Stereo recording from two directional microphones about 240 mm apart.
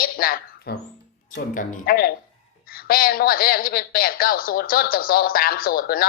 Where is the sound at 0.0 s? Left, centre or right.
Left.